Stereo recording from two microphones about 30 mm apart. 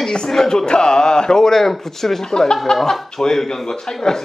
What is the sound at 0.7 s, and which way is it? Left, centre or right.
Speech, left.